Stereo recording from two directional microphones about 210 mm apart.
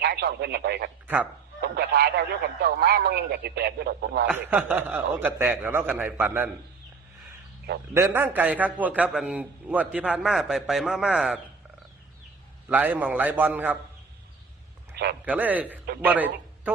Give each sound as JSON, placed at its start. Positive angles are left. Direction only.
{"t": 0.0, "sound": "speech", "side_deg": -50}
{"t": 1.0, "sound": "speech", "side_deg": -5}
{"t": 1.6, "sound": "a man's voice", "side_deg": -50}
{"t": 4.3, "sound": "a man's voice", "side_deg": -5}
{"t": 7.9, "sound": "a man's voice", "side_deg": -10}
{"t": 12.6, "sound": "a man's voice", "side_deg": -5}
{"t": 15.2, "sound": "a man's voice", "side_deg": -5}